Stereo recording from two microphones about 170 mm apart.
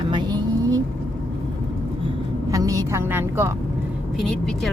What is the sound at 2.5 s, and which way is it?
Speech, 20° right (ahead or behind).